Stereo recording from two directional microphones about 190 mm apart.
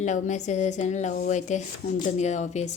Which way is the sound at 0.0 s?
40° left (ahead or behind).